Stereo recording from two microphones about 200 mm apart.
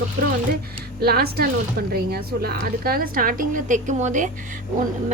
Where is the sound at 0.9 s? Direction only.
50° right (ahead or behind).